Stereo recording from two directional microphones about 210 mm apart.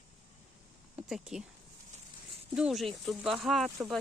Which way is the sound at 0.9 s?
5° right (ahead or behind).